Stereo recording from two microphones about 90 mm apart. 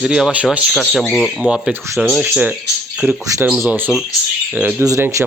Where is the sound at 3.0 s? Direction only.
15° right (ahead or behind).